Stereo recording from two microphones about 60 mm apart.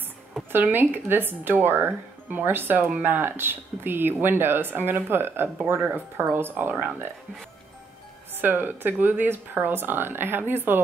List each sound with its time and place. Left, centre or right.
0.5 s speech: right
8.4 s speech: right